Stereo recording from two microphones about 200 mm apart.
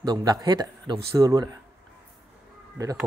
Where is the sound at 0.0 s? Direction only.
20° right (ahead or behind).